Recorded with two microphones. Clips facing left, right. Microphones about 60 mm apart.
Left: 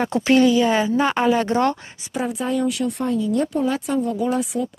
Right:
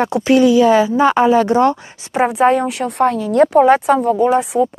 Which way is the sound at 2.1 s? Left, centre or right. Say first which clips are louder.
Right 10 dB; right.